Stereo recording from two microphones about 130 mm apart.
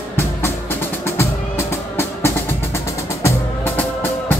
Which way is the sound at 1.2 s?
20° left (ahead or behind).